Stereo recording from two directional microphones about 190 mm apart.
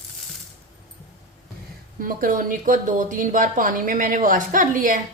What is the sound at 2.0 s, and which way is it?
Speech, 45° right (ahead or behind).